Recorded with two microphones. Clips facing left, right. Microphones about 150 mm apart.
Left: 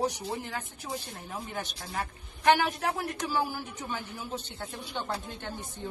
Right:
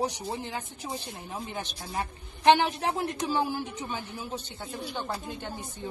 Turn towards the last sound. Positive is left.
turn(degrees=-15)  # may be behind; listen again after turning